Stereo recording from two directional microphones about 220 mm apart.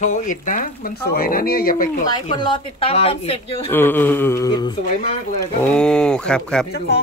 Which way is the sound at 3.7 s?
10° left (ahead or behind).